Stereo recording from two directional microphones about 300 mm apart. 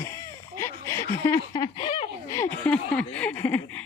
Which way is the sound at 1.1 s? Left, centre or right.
Centre.